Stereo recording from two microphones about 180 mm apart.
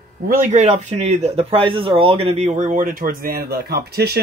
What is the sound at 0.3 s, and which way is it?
Speech, 45° right (ahead or behind).